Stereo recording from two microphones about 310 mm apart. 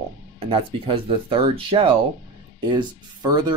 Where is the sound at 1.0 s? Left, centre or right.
Centre.